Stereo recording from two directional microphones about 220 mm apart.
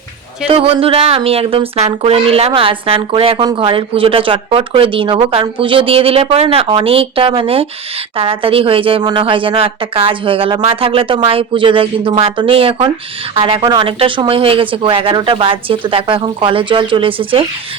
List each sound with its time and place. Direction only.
0.4 s speech: 25° right (ahead or behind)